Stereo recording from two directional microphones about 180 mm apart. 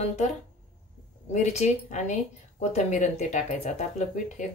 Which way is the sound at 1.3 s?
40° left (ahead or behind).